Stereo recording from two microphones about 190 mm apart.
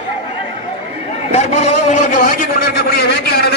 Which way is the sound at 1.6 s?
35° left (ahead or behind).